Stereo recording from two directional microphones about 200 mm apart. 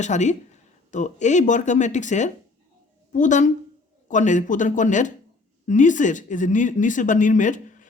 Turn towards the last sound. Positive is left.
turn(degrees=40)  # may be behind; listen again after turning